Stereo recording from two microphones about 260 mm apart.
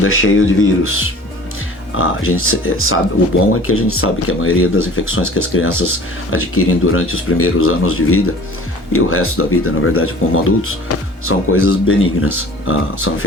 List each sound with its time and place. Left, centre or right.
0.0 s speech: left
2.0 s speech: left